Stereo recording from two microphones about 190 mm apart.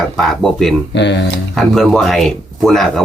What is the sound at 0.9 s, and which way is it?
Speech, 65° left (ahead or behind).